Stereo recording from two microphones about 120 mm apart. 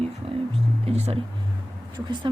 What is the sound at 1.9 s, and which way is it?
Speech, 40° right (ahead or behind).